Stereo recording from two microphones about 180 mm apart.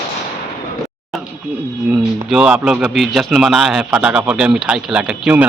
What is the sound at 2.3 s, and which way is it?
A man's voice, 5° right (ahead or behind).